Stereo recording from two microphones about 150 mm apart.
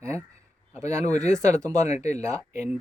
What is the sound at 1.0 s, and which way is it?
Speech, 50° left (ahead or behind).